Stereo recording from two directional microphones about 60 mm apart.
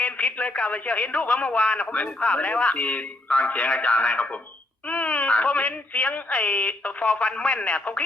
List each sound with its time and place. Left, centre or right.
0.0 s a man's voice: left